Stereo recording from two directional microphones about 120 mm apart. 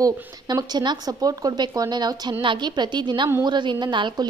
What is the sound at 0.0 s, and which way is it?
A woman's voice, 35° right (ahead or behind).